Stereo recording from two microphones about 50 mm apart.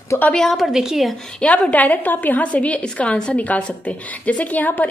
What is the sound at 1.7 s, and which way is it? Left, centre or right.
A woman's voice, left.